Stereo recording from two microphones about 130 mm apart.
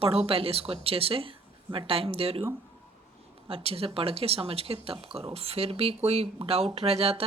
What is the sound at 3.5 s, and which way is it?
Speech, 45° right (ahead or behind).